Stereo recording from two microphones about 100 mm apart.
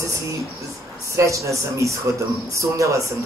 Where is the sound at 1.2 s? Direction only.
30° right (ahead or behind).